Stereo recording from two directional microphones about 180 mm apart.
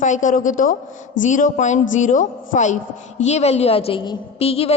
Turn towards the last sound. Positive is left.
turn(degrees=35)  # may be behind; listen again after turning